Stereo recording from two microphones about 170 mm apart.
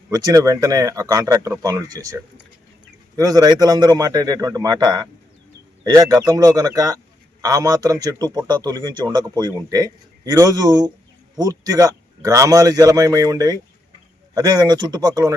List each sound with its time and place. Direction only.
0.1 s a man's voice: 20° right (ahead or behind)